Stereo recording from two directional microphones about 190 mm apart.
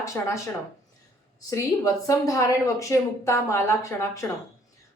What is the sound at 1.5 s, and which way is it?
Speech, 15° left (ahead or behind).